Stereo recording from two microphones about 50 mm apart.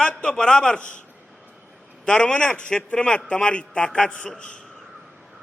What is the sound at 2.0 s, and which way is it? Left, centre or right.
A man's voice, centre.